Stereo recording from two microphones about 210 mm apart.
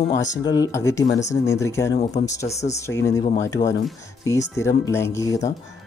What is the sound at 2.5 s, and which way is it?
Speech, 30° left (ahead or behind).